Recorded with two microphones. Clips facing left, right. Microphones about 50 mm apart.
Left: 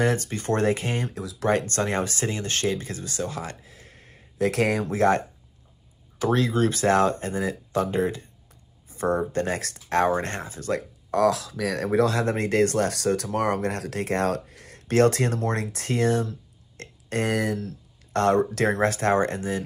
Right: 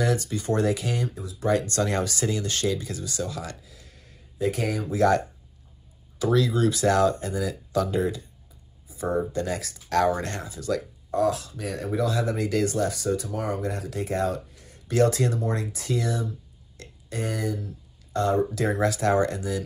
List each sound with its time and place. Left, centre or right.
0.0 s speech: left
1.1 s speech: left
1.5 s speech: left
4.4 s speech: left
4.9 s speech: left
8.5 s a sound: left
9.8 s speech: left
11.1 s speech: left
18.8 s speech: left